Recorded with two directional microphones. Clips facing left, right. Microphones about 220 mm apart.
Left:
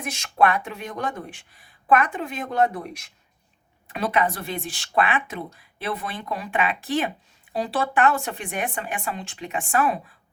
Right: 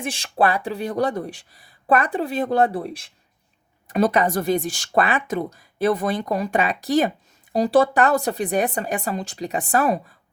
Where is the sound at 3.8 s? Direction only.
40° right (ahead or behind).